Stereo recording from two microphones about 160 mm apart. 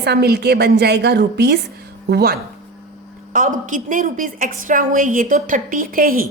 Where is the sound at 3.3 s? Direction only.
55° right (ahead or behind).